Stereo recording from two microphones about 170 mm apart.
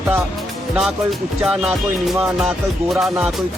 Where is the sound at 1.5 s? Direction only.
5° right (ahead or behind).